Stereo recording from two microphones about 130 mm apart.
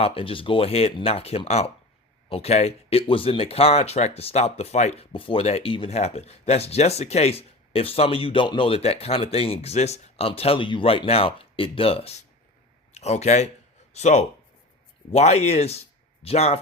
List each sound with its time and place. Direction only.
0.0 s speech: 45° left (ahead or behind)